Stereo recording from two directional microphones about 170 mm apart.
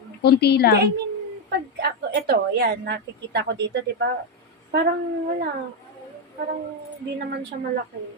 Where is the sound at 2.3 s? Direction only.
70° right (ahead or behind).